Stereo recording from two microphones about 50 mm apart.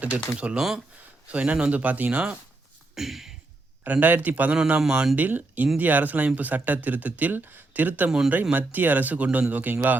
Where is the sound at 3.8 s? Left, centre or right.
Right.